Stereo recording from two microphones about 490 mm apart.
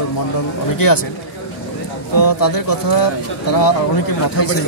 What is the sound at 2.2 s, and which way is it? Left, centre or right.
Speech, left.